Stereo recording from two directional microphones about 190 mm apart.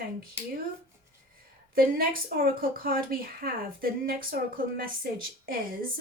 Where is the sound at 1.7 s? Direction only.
50° right (ahead or behind).